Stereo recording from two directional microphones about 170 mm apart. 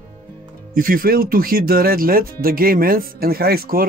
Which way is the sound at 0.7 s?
55° right (ahead or behind).